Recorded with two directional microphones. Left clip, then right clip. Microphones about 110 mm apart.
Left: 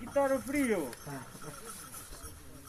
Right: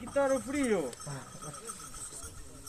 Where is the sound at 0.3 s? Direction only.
35° right (ahead or behind).